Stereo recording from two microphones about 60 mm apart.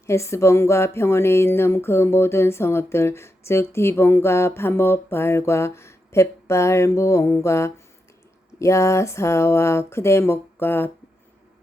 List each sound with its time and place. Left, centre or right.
0.0 s speech: left